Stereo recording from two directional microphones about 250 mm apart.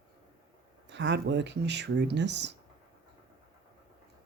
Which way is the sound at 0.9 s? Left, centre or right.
Right.